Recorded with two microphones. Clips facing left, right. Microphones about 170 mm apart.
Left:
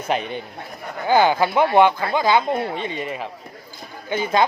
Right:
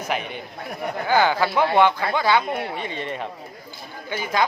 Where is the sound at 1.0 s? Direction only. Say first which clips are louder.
Left 3 dB; 15° left (ahead or behind).